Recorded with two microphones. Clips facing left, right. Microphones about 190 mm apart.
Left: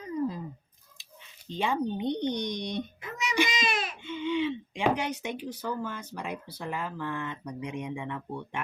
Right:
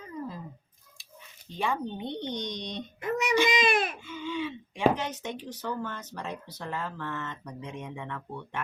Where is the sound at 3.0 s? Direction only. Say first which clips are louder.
Right 7 dB; 55° right (ahead or behind).